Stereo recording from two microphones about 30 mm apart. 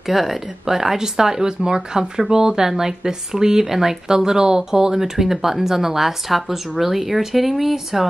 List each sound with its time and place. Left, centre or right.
0.1 s speech: centre